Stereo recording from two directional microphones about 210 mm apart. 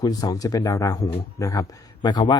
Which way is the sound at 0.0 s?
20° left (ahead or behind).